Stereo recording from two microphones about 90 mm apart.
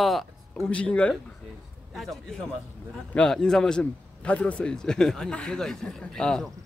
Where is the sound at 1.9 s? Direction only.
Centre (ahead or behind).